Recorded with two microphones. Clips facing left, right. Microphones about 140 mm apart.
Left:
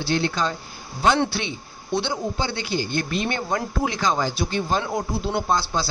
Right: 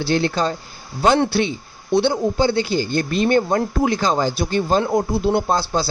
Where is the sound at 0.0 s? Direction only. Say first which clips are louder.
Right 4 dB; 40° right (ahead or behind).